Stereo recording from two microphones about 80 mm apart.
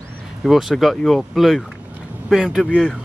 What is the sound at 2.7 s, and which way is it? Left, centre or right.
Speech, centre.